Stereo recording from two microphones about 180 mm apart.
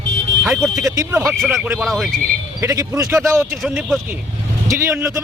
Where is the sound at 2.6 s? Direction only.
20° right (ahead or behind).